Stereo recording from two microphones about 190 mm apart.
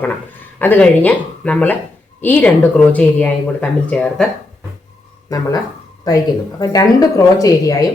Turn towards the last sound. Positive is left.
turn(degrees=20)  # may be behind; listen again after turning